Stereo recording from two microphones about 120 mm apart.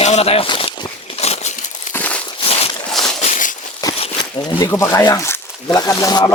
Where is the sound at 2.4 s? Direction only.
55° left (ahead or behind).